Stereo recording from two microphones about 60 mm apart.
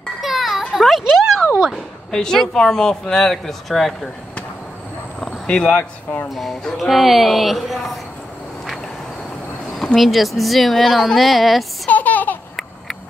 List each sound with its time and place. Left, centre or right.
0.2 s a sound: centre
2.0 s speech: centre
5.5 s speech: centre
6.3 s speech: centre
9.9 s speech: centre
11.9 s a sound: left